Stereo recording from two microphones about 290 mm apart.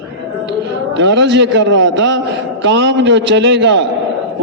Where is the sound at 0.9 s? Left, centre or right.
Right.